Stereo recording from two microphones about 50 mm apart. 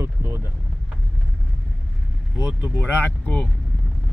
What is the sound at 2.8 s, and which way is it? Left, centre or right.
Speech, left.